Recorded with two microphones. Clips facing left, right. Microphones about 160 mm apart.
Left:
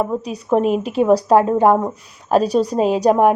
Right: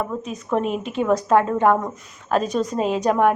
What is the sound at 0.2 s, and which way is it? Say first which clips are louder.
A woman's voice: left 6 dB; 35° left (ahead or behind).